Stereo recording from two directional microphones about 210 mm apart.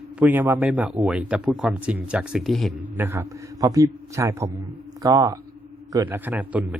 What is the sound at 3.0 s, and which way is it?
Speech, 10° right (ahead or behind).